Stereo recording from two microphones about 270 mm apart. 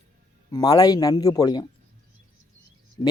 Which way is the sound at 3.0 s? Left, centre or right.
Centre.